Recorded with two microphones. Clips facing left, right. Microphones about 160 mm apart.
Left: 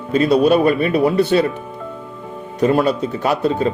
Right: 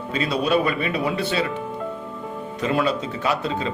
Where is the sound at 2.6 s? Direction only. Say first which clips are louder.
Left 7 dB; 50° left (ahead or behind).